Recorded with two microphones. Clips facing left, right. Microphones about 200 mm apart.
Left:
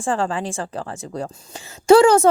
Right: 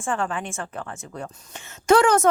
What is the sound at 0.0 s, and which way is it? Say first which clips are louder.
Speech: left 4 dB; 30° left (ahead or behind).